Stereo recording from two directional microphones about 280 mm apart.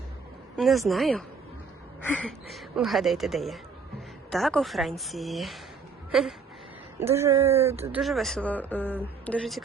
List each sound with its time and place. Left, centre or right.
0.5 s speech: centre
6.1 s a sound: centre
7.0 s speech: centre